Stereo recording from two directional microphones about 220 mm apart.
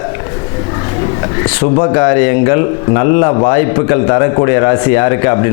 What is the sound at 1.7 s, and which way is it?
A man's voice, 25° left (ahead or behind).